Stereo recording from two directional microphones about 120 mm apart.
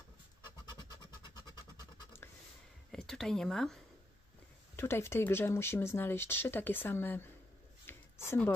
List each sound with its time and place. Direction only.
2.9 s speech: 5° left (ahead or behind)
4.7 s speech: 20° left (ahead or behind)
7.8 s a sound: 20° left (ahead or behind)